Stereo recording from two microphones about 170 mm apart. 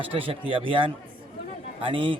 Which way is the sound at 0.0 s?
35° right (ahead or behind).